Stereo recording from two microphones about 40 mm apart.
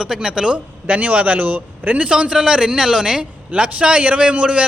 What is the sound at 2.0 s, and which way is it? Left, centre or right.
A man's voice, right.